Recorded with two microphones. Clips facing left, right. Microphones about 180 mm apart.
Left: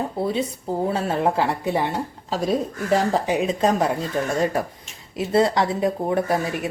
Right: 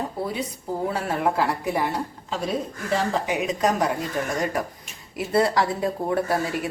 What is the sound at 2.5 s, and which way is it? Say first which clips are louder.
A woman's voice: left 6 dB; 40° left (ahead or behind).